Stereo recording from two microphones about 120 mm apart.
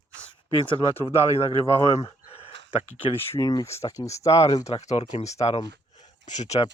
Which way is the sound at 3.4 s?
25° left (ahead or behind).